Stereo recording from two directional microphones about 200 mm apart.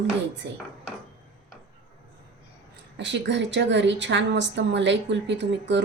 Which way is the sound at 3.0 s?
60° right (ahead or behind).